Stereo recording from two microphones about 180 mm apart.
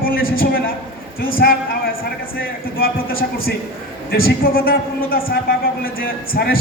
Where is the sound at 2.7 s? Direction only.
55° left (ahead or behind).